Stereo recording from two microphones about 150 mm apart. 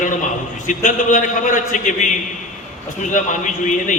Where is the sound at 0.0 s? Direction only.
60° left (ahead or behind).